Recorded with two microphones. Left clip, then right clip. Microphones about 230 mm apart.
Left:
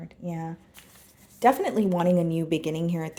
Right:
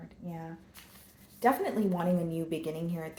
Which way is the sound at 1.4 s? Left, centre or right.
Left.